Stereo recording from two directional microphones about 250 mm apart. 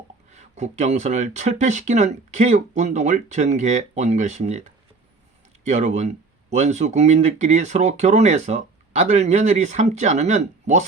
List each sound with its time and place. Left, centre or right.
0.3 s speech: right